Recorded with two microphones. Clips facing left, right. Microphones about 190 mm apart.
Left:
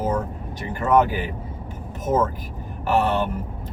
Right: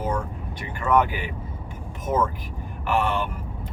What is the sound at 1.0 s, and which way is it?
Speech, 40° left (ahead or behind).